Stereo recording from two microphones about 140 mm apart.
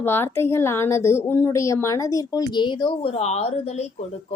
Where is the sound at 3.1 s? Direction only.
50° left (ahead or behind).